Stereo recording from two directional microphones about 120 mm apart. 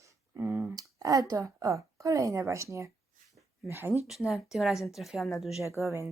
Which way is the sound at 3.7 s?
20° right (ahead or behind).